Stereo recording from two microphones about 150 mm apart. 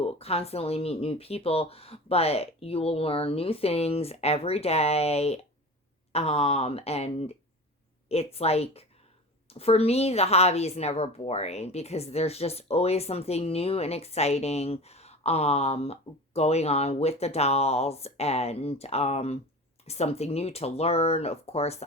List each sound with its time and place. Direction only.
0.0 s a woman's voice: 40° left (ahead or behind)